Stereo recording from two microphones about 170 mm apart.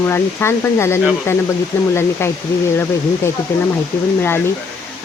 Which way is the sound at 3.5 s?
15° left (ahead or behind).